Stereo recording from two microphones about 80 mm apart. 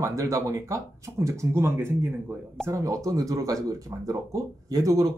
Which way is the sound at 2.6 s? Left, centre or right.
Right.